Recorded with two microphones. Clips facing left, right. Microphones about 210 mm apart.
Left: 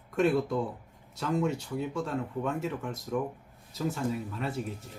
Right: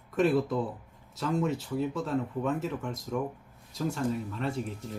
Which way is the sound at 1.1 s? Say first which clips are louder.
Even; centre (ahead or behind).